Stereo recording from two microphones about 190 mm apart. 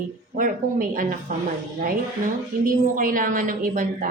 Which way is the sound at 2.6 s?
45° right (ahead or behind).